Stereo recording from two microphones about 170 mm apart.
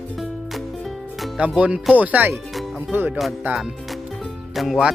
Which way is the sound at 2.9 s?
10° right (ahead or behind).